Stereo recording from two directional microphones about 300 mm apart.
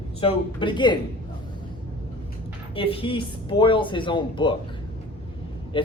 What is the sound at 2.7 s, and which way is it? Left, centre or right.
Speech, centre.